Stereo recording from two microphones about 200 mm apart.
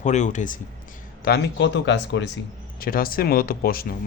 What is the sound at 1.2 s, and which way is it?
A man's voice, 60° left (ahead or behind).